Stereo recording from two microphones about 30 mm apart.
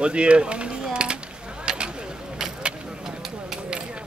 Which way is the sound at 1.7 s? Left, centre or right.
Right.